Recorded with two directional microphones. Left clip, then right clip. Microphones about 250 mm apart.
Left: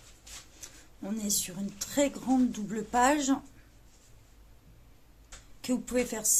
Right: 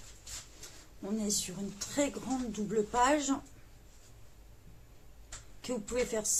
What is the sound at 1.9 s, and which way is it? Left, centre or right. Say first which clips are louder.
A woman's voice: left 6 dB; left.